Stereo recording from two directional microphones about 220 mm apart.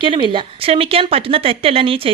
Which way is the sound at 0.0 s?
25° right (ahead or behind).